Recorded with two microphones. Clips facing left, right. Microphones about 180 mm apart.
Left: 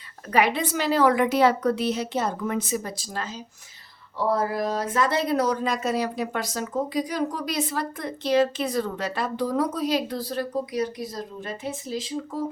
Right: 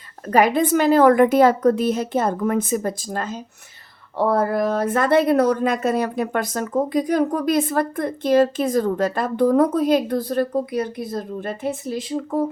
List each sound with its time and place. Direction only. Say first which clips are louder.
0.3 s a woman's voice: right 6 dB; 45° right (ahead or behind); by 12.5 s 60° right (ahead or behind)